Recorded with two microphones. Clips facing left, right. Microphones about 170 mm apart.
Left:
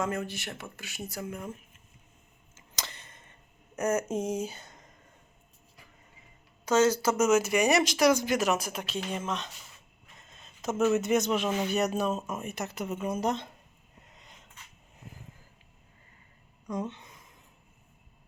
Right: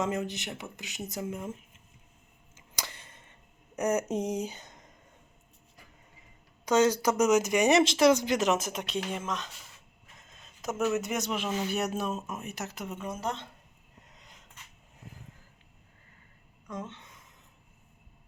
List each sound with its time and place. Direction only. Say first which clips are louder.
0.0 s speech: right 1 dB; 20° right (ahead or behind)
2.6 s a sound: even; 10° right (ahead or behind)
3.8 s speech: even; 15° right (ahead or behind)
6.7 s speech: even; 15° right (ahead or behind)
8.8 s speech: right 1 dB; centre (ahead or behind)
10.6 s speech: left 3 dB; centre (ahead or behind)
16.6 s speech: left 5 dB; 15° left (ahead or behind)